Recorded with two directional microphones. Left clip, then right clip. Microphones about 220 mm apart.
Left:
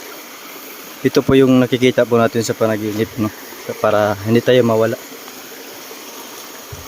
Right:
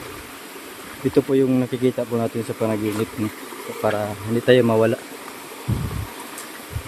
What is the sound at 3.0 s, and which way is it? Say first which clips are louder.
Speech: left 5 dB; 20° left (ahead or behind).